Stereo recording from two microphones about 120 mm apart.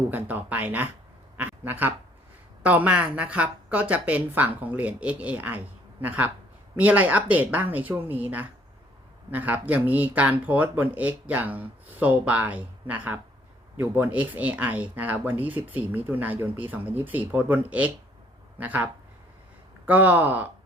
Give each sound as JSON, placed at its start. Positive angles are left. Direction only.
{"t": 0.1, "sound": "speech", "side_deg": -15}
{"t": 1.4, "sound": "a sound", "side_deg": -15}
{"t": 2.6, "sound": "speech", "side_deg": -10}